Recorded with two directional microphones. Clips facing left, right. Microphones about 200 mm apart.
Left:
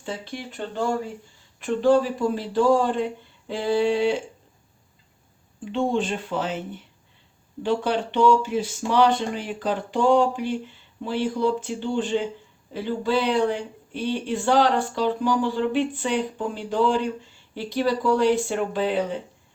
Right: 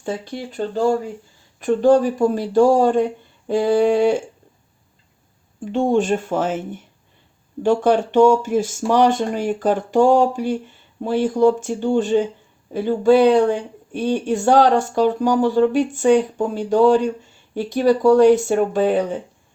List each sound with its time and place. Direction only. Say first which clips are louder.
0.0 s speech: right 6 dB; 45° right (ahead or behind)
5.6 s speech: right 6 dB; 45° right (ahead or behind)